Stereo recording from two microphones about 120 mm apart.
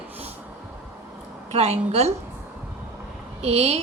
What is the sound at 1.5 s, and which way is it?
Speech, 60° right (ahead or behind).